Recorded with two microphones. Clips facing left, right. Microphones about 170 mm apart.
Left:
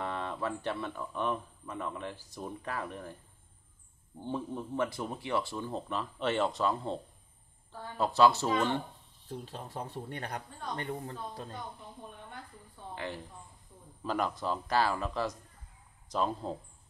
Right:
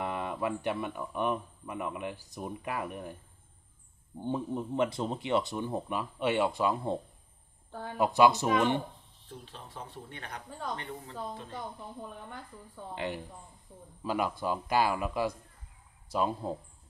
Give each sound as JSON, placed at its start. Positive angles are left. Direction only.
{"t": 0.0, "sound": "speech", "side_deg": -15}
{"t": 4.2, "sound": "speech", "side_deg": -20}
{"t": 8.0, "sound": "speech", "side_deg": -15}
{"t": 9.4, "sound": "speech", "side_deg": 40}
{"t": 12.9, "sound": "speech", "side_deg": -20}
{"t": 14.0, "sound": "speech", "side_deg": -10}